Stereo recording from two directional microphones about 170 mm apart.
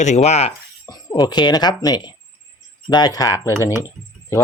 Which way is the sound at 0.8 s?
25° left (ahead or behind).